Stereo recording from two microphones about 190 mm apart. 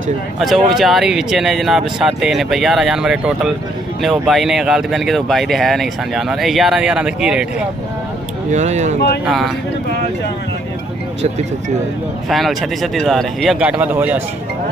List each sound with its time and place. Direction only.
0.4 s speech: centre (ahead or behind)
8.5 s speech: 35° right (ahead or behind)
9.2 s speech: centre (ahead or behind)
12.3 s speech: centre (ahead or behind)